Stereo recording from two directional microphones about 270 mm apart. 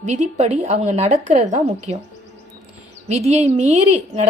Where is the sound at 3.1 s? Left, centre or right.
Right.